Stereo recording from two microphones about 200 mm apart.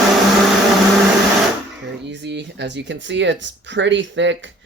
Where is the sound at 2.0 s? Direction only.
60° right (ahead or behind).